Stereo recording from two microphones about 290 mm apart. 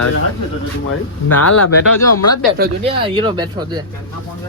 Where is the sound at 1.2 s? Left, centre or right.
Left.